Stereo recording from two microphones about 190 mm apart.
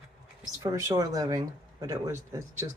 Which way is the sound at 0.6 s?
15° right (ahead or behind).